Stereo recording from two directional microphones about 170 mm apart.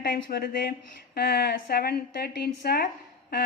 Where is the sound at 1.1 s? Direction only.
70° left (ahead or behind).